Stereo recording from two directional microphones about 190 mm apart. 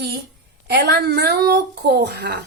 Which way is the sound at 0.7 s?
60° right (ahead or behind).